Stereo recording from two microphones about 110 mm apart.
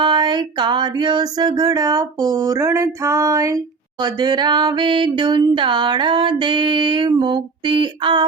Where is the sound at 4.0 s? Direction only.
40° right (ahead or behind).